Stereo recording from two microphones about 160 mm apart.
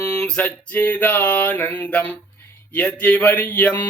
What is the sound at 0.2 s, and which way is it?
Mantra, 5° left (ahead or behind).